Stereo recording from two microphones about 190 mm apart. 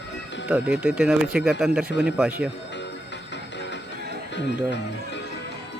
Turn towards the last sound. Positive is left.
turn(degrees=65)  # may be behind; listen again after turning